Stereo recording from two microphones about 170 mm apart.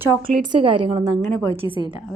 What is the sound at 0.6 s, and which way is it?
Speech, 30° right (ahead or behind).